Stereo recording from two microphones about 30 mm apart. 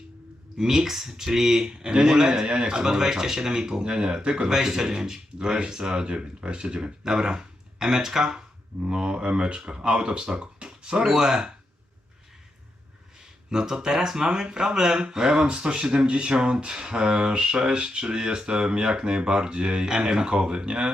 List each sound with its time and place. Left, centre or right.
0.6 s speech: centre
4.4 s speech: centre; by 6.9 s right
7.0 s speech: right
10.4 s a sound: right
11.0 s speech: centre
13.5 s speech: right
14.4 s speech: right
19.9 s speech: right